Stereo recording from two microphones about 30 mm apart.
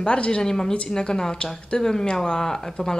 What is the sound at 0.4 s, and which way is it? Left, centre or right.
A man's voice, left.